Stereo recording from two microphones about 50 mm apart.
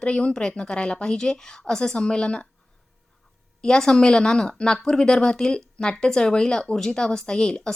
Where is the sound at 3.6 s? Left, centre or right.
Centre.